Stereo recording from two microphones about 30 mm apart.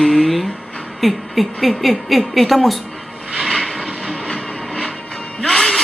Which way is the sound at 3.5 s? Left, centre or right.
Centre.